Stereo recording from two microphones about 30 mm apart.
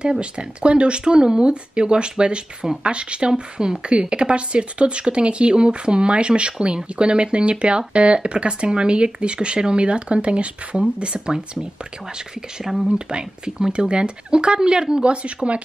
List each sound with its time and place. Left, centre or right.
0.0 s speech: right
1.0 s speech: right
11.3 s speech: right
12.7 s speech: centre
13.1 s speech: right
15.0 s speech: right